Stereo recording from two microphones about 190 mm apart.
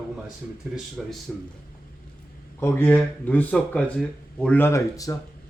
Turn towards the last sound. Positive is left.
turn(degrees=15)  # may be behind; listen again after turning